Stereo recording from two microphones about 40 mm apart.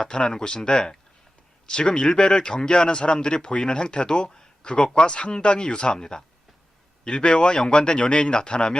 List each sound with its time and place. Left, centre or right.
0.0 s speech: left